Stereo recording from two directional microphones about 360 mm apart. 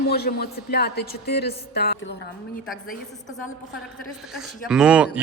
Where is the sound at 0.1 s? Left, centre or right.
Left.